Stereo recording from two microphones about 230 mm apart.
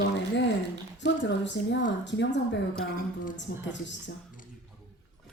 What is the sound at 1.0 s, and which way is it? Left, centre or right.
Speech, left.